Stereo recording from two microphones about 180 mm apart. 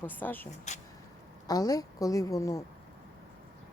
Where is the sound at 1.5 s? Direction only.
20° left (ahead or behind).